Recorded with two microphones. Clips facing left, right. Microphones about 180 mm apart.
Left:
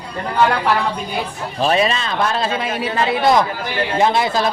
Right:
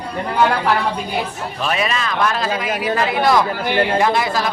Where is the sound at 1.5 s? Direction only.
30° left (ahead or behind).